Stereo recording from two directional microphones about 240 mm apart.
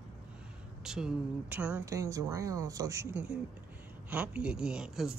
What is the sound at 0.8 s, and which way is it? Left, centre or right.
Speech, centre.